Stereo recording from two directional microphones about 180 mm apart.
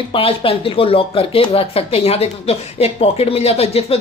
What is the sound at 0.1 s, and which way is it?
Speech, 30° left (ahead or behind).